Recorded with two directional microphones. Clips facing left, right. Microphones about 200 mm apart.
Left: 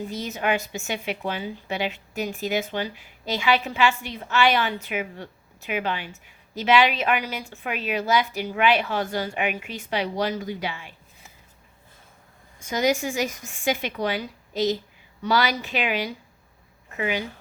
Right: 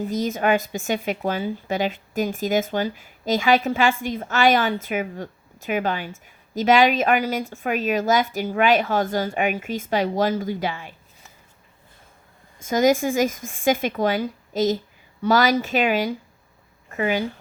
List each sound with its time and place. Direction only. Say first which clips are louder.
0.1 s a woman's voice: right 6 dB; 45° right (ahead or behind)
12.6 s a woman's voice: right 5 dB; 45° right (ahead or behind)